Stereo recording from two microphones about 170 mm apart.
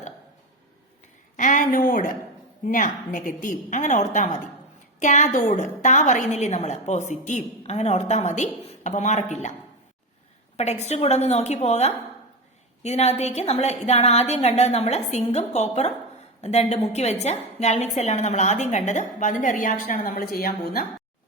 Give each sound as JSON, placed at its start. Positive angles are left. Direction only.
{"t": 1.4, "sound": "a sound", "side_deg": 50}
{"t": 2.6, "sound": "a woman's voice", "side_deg": 50}
{"t": 10.6, "sound": "a woman's voice", "side_deg": 40}